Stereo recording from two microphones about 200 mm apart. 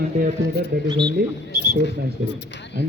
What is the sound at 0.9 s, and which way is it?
Speech, 25° right (ahead or behind).